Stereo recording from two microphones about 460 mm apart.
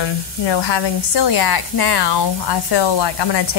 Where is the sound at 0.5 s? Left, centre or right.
Left.